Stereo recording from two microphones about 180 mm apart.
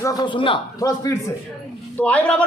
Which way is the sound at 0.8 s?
15° left (ahead or behind).